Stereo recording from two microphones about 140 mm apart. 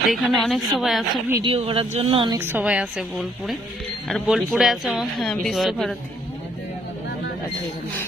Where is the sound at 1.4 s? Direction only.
40° right (ahead or behind).